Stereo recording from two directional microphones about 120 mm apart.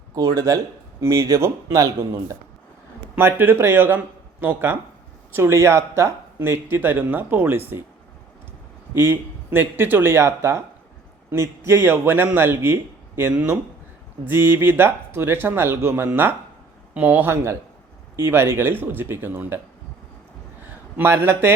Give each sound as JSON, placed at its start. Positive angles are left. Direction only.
{"t": 0.1, "sound": "speech", "side_deg": -30}
{"t": 9.0, "sound": "a man's voice", "side_deg": -20}
{"t": 20.7, "sound": "speech", "side_deg": -15}